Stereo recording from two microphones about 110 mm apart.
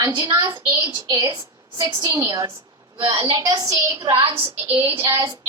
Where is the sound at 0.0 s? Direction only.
45° right (ahead or behind).